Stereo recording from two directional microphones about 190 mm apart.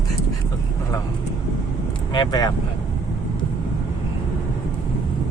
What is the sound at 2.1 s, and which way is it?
Speech, 20° left (ahead or behind).